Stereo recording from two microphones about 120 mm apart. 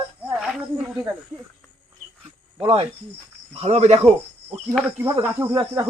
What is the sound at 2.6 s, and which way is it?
Speech, 55° right (ahead or behind).